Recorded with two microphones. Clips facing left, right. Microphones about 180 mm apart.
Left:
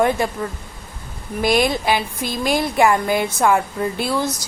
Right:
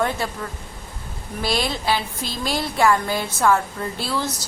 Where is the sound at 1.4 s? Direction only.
15° left (ahead or behind).